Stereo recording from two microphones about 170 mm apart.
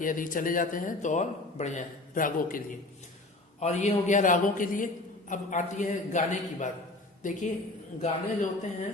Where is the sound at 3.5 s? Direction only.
40° left (ahead or behind).